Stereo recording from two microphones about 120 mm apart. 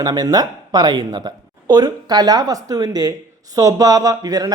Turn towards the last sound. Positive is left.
turn(degrees=-30)  # may be behind; listen again after turning